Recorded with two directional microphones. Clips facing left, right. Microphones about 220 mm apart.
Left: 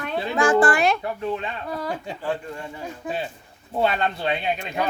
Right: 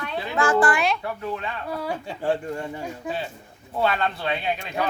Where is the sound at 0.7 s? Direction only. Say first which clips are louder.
Left 3 dB; 50° left (ahead or behind).